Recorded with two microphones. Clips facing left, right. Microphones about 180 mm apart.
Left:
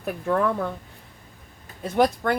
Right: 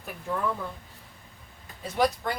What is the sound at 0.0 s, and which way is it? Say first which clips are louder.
Speech: left 8 dB; 70° left (ahead or behind).